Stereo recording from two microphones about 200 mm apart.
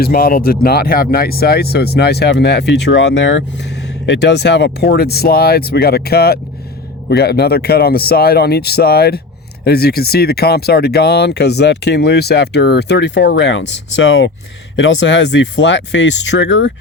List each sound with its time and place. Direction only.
0.0 s speech: 45° left (ahead or behind); by 16.7 s 65° left (ahead or behind)